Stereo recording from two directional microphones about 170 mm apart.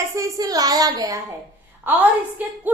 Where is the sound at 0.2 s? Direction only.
20° right (ahead or behind).